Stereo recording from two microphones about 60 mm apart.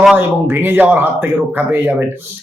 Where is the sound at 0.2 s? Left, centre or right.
Right.